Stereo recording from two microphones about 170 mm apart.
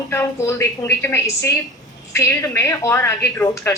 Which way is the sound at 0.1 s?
15° left (ahead or behind).